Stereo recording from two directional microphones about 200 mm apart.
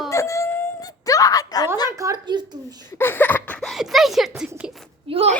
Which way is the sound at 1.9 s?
15° right (ahead or behind).